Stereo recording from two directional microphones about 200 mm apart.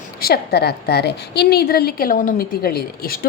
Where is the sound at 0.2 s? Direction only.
50° left (ahead or behind).